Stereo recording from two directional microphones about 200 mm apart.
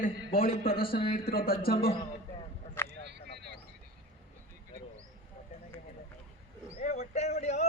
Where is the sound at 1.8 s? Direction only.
30° left (ahead or behind).